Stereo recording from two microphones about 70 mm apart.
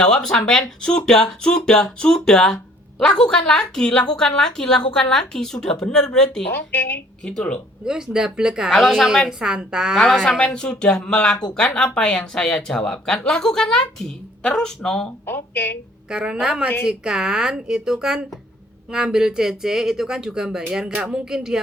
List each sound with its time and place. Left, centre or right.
0.0 s speech: centre
6.5 s speech: left
7.3 s speech: centre
7.9 s speech: centre
8.7 s a woman's voice: centre
9.0 s speech: centre
10.0 s speech: centre
15.3 s speech: left
16.0 s speech: centre